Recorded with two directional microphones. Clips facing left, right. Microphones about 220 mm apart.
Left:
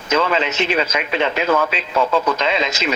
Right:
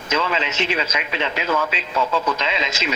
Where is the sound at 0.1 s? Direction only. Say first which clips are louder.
Left 5 dB; 50° left (ahead or behind).